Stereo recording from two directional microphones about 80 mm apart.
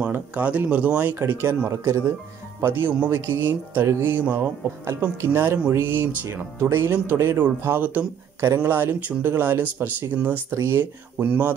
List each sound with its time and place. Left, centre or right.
0.1 s speech: centre
4.2 s speech: centre
4.8 s speech: right